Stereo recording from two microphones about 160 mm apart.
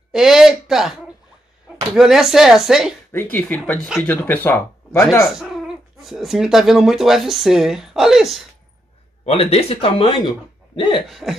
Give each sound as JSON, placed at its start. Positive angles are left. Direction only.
{"t": 0.1, "sound": "speech", "side_deg": -5}
{"t": 2.0, "sound": "speech", "side_deg": -5}
{"t": 3.1, "sound": "speech", "side_deg": 15}
{"t": 5.2, "sound": "speech", "side_deg": 0}
{"t": 9.2, "sound": "speech", "side_deg": 40}
{"t": 10.8, "sound": "cough", "side_deg": 25}
{"t": 11.1, "sound": "speech", "side_deg": 0}